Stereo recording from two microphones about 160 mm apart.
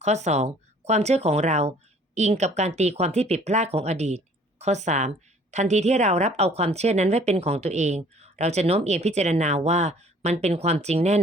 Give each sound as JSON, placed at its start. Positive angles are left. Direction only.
{"t": 0.0, "sound": "a woman's voice", "side_deg": -45}